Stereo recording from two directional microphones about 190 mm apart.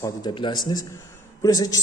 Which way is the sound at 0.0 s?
20° left (ahead or behind).